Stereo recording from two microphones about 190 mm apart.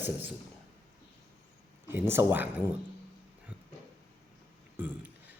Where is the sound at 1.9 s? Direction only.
10° right (ahead or behind).